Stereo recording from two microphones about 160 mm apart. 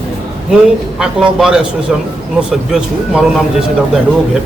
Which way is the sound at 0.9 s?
5° right (ahead or behind).